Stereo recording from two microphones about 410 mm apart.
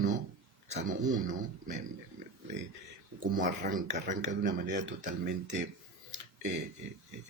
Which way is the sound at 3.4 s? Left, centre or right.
Centre.